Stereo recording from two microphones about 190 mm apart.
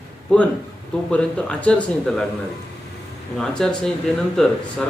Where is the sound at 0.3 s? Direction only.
5° left (ahead or behind).